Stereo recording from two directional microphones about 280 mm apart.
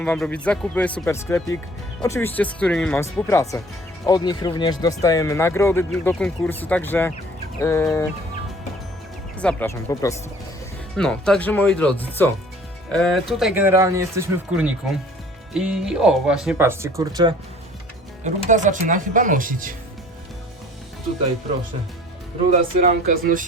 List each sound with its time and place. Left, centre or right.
0.0 s speech: centre
9.4 s speech: centre
18.2 s speech: right
22.5 s speech: right